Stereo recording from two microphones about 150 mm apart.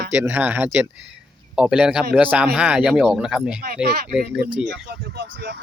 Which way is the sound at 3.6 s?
85° right.